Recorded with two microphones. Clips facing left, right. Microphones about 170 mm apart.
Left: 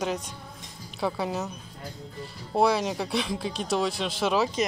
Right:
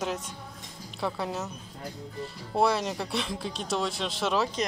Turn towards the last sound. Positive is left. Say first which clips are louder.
# left 3 dB
turn(degrees=5)  # may be behind; listen again after turning